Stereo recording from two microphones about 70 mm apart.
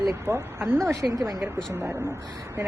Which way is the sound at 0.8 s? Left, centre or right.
Right.